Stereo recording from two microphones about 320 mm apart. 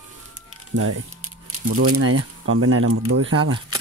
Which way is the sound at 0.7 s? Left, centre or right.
Right.